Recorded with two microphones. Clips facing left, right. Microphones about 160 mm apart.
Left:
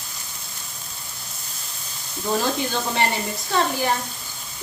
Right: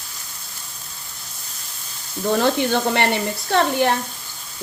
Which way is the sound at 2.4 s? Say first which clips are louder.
Right 6 dB; 65° right (ahead or behind).